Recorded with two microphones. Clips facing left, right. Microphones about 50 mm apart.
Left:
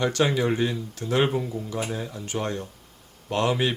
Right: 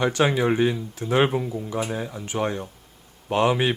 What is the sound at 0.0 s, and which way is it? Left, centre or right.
Speech, centre.